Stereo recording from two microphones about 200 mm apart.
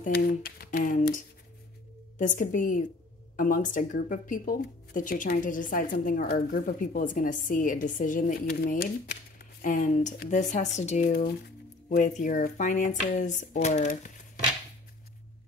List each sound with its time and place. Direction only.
0.0 s speech: 45° left (ahead or behind)